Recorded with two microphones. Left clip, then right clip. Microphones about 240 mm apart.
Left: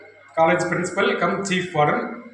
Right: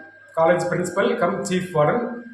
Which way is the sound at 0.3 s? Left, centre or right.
Centre.